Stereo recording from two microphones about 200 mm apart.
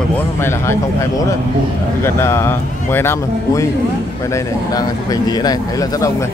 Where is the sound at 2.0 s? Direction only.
10° left (ahead or behind).